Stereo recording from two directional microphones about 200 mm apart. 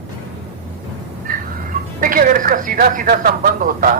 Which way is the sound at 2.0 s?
45° right (ahead or behind).